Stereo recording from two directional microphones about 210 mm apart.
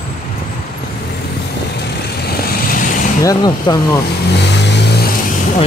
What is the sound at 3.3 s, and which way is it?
Speech, 20° left (ahead or behind).